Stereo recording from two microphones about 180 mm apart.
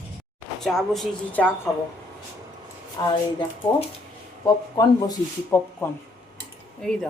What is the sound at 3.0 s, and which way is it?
Speech, 20° left (ahead or behind).